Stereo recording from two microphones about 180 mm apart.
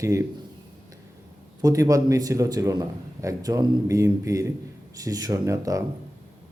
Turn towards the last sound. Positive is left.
turn(degrees=-20)  # may be behind; listen again after turning